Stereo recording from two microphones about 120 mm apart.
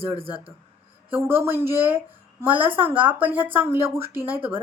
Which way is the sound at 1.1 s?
20° right (ahead or behind).